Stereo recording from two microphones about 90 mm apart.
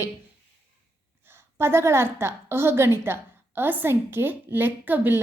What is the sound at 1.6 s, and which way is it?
A woman's voice, 30° right (ahead or behind).